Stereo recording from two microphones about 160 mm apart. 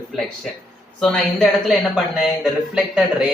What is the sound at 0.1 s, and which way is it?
Speech, centre (ahead or behind).